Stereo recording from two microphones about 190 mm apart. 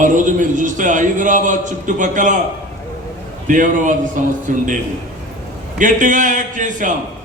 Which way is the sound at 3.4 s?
45° right (ahead or behind).